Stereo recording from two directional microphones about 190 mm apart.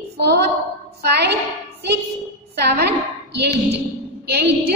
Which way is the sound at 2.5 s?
60° right (ahead or behind).